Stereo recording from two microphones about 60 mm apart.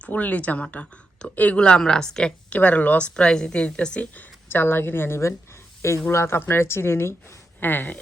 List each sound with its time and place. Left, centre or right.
0.0 s a woman's voice: left
2.5 s a woman's voice: left
4.4 s a woman's voice: left